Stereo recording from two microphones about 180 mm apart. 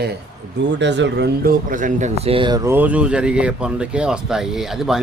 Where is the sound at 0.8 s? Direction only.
80° right.